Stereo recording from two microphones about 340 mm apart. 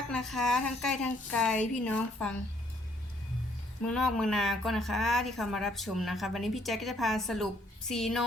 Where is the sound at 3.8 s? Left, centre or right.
Centre.